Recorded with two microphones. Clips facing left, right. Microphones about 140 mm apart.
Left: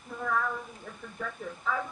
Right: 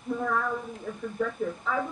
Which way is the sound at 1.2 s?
Centre (ahead or behind).